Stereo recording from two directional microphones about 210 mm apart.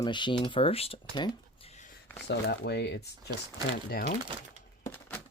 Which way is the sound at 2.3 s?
55° left (ahead or behind).